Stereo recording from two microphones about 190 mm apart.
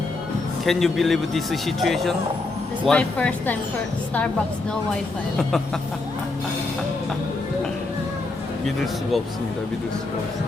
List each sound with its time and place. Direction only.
0.6 s a man's voice: centre (ahead or behind)